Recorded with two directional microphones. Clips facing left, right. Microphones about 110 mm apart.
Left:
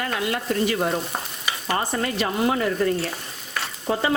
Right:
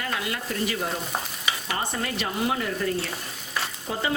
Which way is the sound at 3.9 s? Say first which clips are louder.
Left 7 dB; 55° left (ahead or behind).